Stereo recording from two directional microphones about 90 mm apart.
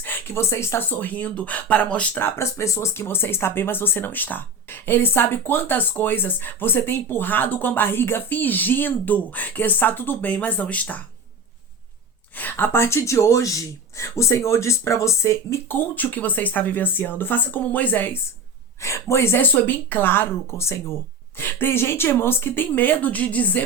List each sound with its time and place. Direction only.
0.0 s speech: 25° left (ahead or behind)
2.1 s speech: 25° left (ahead or behind)
12.4 s speech: 20° left (ahead or behind)
18.8 s speech: 30° left (ahead or behind)